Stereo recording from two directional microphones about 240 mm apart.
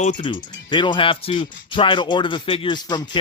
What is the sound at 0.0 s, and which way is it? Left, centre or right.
Speech, left.